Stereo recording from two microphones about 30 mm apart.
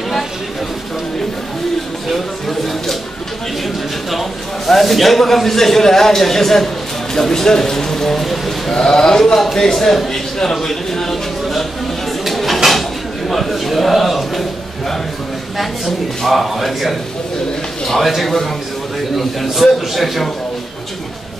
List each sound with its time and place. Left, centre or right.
2.0 s a sound: centre
4.1 s a man's voice: centre
8.7 s a man's voice: left
12.3 s a sound: centre
13.3 s a man's voice: centre
15.5 s a man's voice: centre
19.1 s a man's voice: centre